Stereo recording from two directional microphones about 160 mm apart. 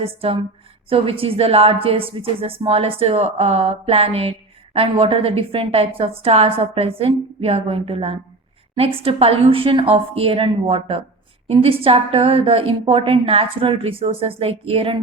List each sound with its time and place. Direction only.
0.0 s a woman's voice: 35° right (ahead or behind)